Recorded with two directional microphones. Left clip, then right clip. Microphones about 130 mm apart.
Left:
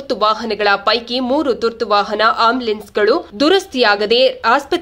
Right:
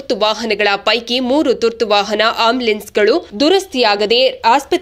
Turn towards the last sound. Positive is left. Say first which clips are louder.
# right 2 dB
turn(degrees=-15)  # may be behind; listen again after turning